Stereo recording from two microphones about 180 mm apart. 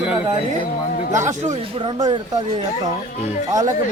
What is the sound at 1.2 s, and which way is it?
Speech, 40° right (ahead or behind).